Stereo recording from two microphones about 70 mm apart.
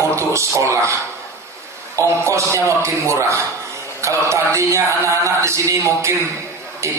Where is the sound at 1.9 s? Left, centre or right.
Right.